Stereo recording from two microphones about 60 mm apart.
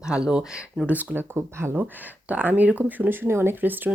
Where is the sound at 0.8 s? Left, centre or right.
Right.